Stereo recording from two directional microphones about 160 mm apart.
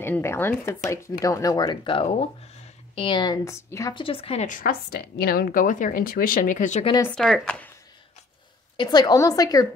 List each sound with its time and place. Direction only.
0.0 s speech: 15° left (ahead or behind)
3.9 s a woman's voice: 35° left (ahead or behind)
4.5 s a woman's voice: 60° left (ahead or behind)
7.2 s speech: centre (ahead or behind)
8.7 s speech: 25° left (ahead or behind)